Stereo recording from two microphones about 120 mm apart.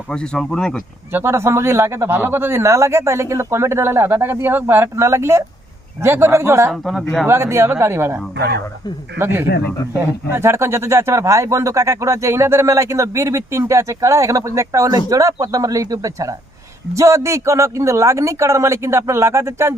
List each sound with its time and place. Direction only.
0.1 s speech: 5° left (ahead or behind)
1.1 s speech: 20° right (ahead or behind)